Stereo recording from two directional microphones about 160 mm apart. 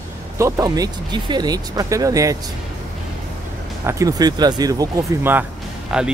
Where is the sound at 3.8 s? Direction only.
20° right (ahead or behind).